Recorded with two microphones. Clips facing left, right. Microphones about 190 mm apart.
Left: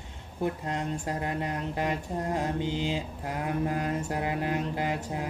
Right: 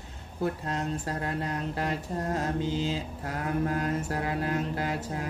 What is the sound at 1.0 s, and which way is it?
Mantra, 15° left (ahead or behind).